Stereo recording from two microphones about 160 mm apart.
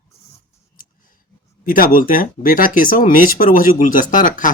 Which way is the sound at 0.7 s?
60° left (ahead or behind).